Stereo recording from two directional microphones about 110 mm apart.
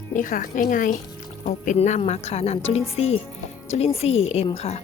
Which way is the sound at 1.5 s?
90° left.